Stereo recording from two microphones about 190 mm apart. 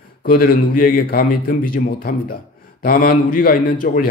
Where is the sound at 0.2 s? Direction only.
50° left (ahead or behind).